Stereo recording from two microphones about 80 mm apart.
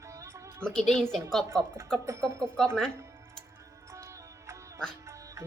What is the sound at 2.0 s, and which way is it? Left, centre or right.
Music, right.